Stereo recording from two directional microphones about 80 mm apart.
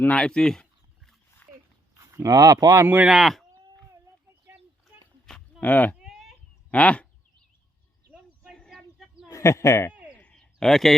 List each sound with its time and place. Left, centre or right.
0.0 s speech: centre
2.0 s speech: right
2.8 s speech: right
3.1 s speech: centre
5.5 s speech: centre
6.0 s a sound: centre
6.7 s speech: centre
8.5 s bird: centre
9.3 s speech: left
10.2 s a sound: centre